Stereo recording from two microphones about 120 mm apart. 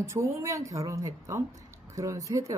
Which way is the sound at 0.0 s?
25° right (ahead or behind).